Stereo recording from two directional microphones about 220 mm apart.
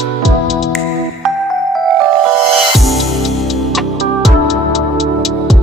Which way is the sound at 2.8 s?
Centre (ahead or behind).